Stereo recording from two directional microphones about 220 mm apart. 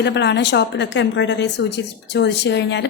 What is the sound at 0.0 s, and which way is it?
A woman's voice, 50° left (ahead or behind).